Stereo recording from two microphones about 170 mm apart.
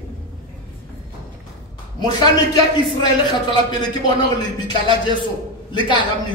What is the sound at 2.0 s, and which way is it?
A man's voice, 25° left (ahead or behind).